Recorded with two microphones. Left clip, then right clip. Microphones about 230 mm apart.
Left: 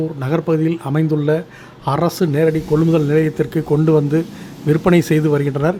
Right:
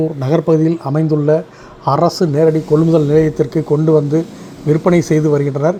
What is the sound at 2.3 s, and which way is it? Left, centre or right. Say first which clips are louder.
Speech: right 4 dB; centre.